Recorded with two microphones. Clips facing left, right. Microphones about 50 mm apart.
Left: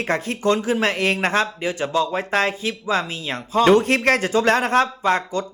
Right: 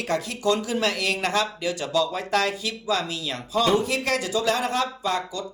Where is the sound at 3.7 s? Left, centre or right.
Left.